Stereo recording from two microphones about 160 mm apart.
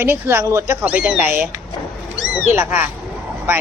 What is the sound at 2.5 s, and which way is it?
Speech, 10° right (ahead or behind).